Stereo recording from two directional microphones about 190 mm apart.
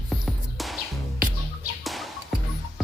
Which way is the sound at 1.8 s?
Centre (ahead or behind).